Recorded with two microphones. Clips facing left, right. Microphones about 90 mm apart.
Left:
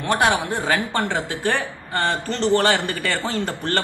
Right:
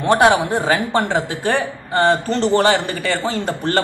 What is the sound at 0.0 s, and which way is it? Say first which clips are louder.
Speech: right 6 dB; 25° right (ahead or behind).